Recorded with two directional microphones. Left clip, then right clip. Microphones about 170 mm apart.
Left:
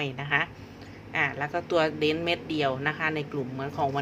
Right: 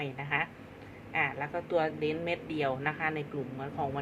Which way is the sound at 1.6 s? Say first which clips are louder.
Left 5 dB; 35° left (ahead or behind).